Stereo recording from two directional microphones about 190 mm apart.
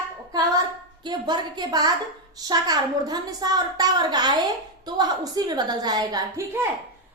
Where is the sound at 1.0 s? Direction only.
25° right (ahead or behind).